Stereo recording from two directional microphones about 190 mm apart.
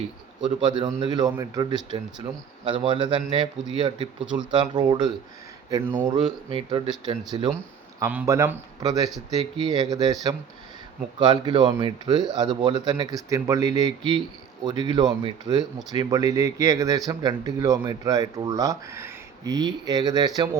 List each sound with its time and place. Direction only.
0.4 s speech: 25° right (ahead or behind)
6.5 s speech: 25° right (ahead or behind)
7.9 s speech: 15° right (ahead or behind)